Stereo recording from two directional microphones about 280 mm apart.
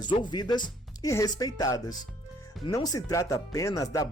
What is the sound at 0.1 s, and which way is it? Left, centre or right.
Speech, centre.